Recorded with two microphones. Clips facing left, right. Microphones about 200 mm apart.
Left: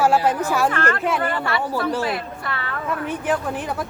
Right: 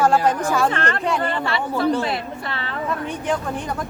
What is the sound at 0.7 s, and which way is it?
Speech, 25° right (ahead or behind).